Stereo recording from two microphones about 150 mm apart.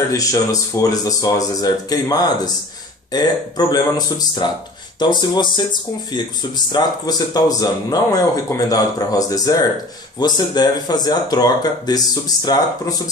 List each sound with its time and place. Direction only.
0.1 s speech: 20° left (ahead or behind)